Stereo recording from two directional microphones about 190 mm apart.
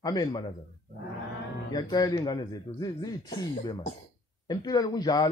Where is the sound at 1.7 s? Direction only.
20° left (ahead or behind).